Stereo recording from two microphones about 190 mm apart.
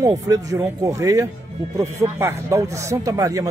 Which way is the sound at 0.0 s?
15° right (ahead or behind).